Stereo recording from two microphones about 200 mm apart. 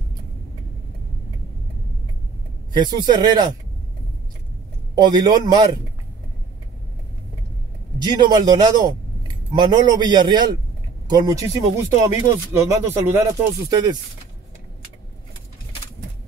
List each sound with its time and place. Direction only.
2.7 s a man's voice: 20° right (ahead or behind)
4.9 s a man's voice: 20° right (ahead or behind)
8.2 s a man's voice: 20° right (ahead or behind)